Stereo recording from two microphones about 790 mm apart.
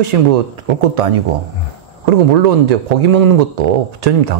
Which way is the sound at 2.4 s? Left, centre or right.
Right.